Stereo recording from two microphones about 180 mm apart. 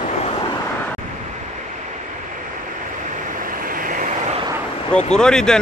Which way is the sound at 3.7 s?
50° right (ahead or behind).